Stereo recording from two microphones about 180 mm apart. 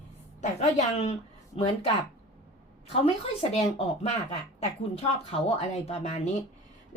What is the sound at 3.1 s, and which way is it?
A woman's voice, 35° left (ahead or behind).